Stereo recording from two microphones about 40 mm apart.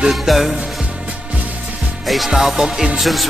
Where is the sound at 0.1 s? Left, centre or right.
Centre.